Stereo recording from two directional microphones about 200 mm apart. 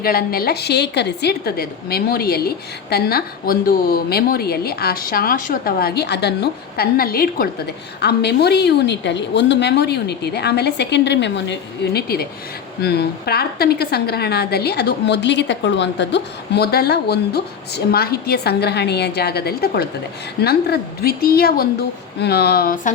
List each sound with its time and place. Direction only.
0.0 s a woman's voice: 50° left (ahead or behind)